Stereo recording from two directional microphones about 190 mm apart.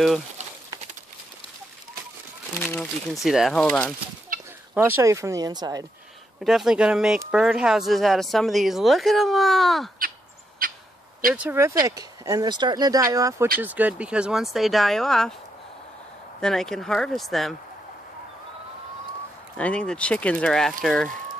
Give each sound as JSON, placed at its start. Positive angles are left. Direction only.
{"t": 2.7, "sound": "speech", "side_deg": 0}
{"t": 4.7, "sound": "speech", "side_deg": -10}
{"t": 6.4, "sound": "speech", "side_deg": 0}
{"t": 10.6, "sound": "a sound", "side_deg": -50}
{"t": 11.3, "sound": "speech", "side_deg": -10}
{"t": 16.3, "sound": "speech", "side_deg": 5}
{"t": 19.5, "sound": "speech", "side_deg": 5}